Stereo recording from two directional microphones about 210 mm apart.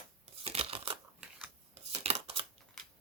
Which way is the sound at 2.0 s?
30° right (ahead or behind).